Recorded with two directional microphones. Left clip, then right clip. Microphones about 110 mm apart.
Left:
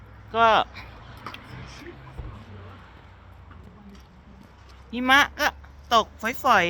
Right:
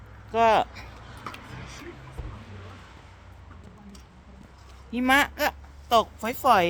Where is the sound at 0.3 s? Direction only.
30° right (ahead or behind).